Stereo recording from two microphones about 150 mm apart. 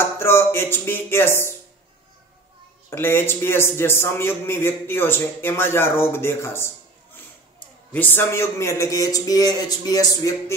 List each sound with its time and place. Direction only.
0.0 s chopping: 15° left (ahead or behind)
2.9 s a man's voice: 15° left (ahead or behind)
7.9 s a man's voice: 15° left (ahead or behind)